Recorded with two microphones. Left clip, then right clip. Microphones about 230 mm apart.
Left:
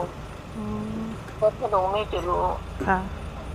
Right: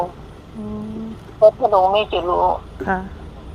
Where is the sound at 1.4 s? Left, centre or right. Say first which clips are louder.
Right 10 dB; right.